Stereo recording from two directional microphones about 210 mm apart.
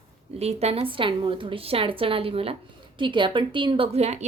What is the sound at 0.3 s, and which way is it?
A woman's voice, 30° right (ahead or behind).